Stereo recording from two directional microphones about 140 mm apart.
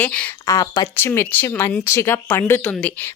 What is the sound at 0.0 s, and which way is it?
Speech, 10° left (ahead or behind).